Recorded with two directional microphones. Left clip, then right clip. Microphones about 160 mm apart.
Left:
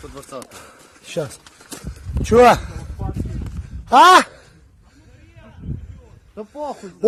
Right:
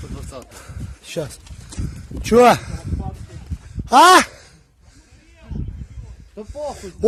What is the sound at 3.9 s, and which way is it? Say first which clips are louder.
Speech: even; 50° right (ahead or behind).